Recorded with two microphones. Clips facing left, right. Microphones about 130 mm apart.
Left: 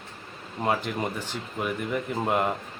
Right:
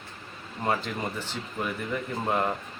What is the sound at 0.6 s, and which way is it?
A man's voice, 10° left (ahead or behind).